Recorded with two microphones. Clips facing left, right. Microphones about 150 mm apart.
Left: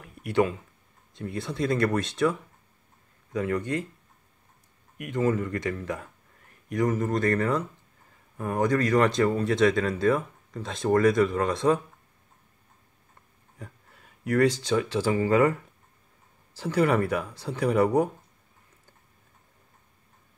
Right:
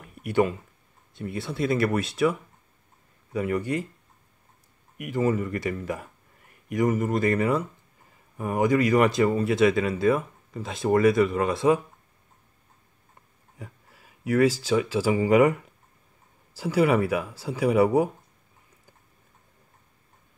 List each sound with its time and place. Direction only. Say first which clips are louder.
0.0 s a sound: right 1 dB; 5° right (ahead or behind)
1.1 s speech: right 1 dB; centre (ahead or behind)
3.3 s speech: right 1 dB; 10° right (ahead or behind)
4.9 s speech: right 1 dB; 5° right (ahead or behind)
13.6 s speech: right 1 dB; 5° right (ahead or behind)